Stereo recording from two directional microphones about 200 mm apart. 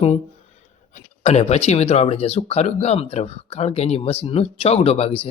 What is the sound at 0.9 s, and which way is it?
Speech, 35° left (ahead or behind).